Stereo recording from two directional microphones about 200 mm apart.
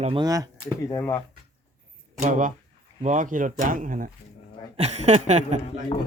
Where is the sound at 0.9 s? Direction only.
15° left (ahead or behind).